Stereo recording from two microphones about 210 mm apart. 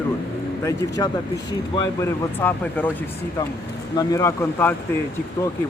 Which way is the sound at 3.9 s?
15° left (ahead or behind).